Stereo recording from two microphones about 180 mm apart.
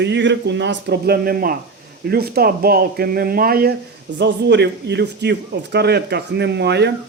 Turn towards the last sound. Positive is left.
turn(degrees=-70)  # may be behind; listen again after turning